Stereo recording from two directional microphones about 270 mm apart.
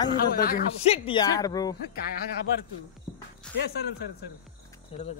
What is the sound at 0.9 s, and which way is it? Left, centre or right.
Speech, centre.